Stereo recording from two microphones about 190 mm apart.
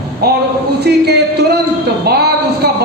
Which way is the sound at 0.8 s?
60° right (ahead or behind).